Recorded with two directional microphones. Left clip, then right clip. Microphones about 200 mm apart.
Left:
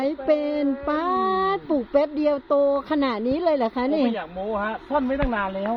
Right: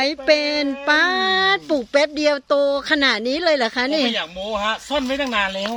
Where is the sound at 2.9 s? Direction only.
Centre (ahead or behind).